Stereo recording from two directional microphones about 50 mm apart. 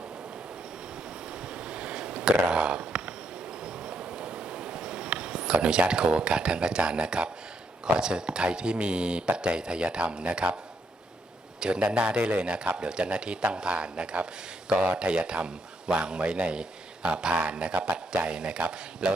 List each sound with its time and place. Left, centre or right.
1.5 s a sound: centre
7.9 s a man's voice: centre
11.6 s a man's voice: centre